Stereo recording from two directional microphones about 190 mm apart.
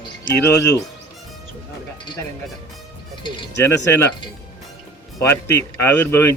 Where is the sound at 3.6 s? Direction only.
15° left (ahead or behind).